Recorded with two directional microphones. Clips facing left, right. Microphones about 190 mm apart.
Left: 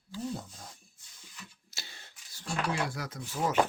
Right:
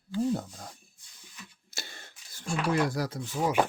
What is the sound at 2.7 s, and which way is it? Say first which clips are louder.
Speech: right 6 dB; 40° right (ahead or behind).